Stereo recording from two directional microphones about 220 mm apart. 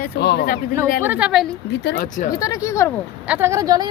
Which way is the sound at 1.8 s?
40° left (ahead or behind).